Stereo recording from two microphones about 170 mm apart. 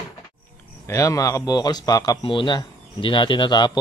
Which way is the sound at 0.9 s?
20° left (ahead or behind).